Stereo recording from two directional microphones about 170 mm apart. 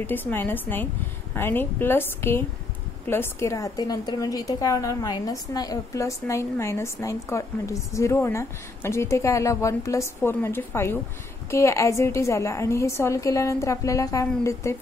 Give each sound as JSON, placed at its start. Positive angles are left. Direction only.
{"t": 0.0, "sound": "a woman's voice", "side_deg": 10}